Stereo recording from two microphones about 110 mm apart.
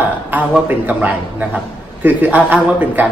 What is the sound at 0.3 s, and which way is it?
A man's voice, 15° right (ahead or behind).